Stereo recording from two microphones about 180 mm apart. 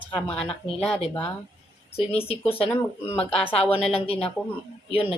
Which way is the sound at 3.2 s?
30° left (ahead or behind).